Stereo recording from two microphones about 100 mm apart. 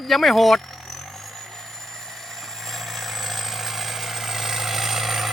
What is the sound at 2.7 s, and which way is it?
Vehicle, centre (ahead or behind).